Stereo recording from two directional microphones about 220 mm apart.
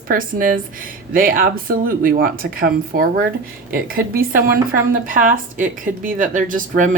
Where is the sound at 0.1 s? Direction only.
40° right (ahead or behind).